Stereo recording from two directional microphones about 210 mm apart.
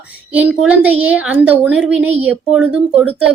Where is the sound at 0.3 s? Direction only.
5° right (ahead or behind).